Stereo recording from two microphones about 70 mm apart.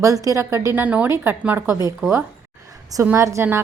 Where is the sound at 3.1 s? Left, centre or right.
Right.